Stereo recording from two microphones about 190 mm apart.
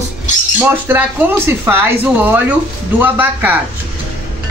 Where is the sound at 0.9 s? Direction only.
10° right (ahead or behind).